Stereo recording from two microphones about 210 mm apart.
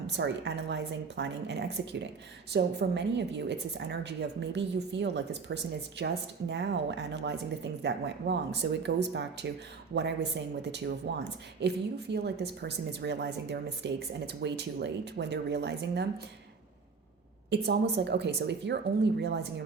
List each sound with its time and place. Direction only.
0.2 s a woman's voice: 55° right (ahead or behind)
17.5 s speech: 55° right (ahead or behind)